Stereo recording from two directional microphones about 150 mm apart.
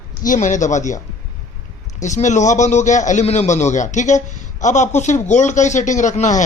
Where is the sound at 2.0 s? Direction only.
55° left (ahead or behind).